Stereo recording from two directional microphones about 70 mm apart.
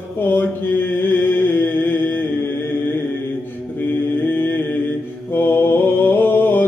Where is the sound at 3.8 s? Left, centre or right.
Left.